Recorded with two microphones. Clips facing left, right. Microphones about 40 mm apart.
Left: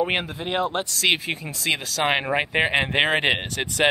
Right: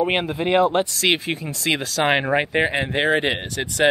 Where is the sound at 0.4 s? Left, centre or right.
Right.